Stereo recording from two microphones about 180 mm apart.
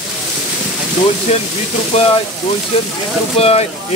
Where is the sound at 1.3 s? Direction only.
35° left (ahead or behind).